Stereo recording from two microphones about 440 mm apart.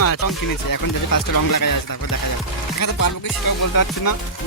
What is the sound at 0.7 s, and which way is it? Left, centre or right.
Speech, left.